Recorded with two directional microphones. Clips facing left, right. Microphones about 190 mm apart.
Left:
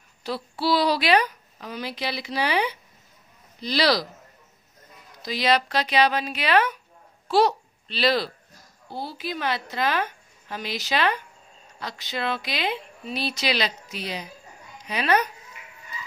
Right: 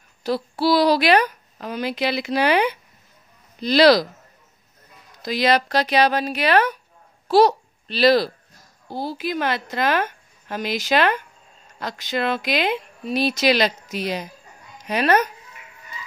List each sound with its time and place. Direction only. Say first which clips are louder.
0.2 s a woman's voice: right 6 dB; 45° right (ahead or behind)
5.2 s a woman's voice: right 3 dB; 50° right (ahead or behind)